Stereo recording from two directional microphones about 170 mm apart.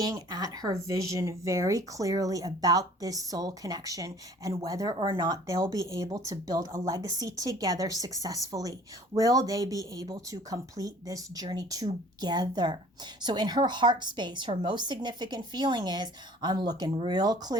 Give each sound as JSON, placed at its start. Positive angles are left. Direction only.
{"t": 0.0, "sound": "speech", "side_deg": -20}